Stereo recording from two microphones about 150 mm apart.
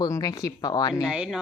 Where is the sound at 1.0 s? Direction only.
5° right (ahead or behind).